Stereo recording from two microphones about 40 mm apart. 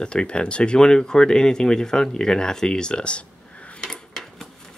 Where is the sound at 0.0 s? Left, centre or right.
Left.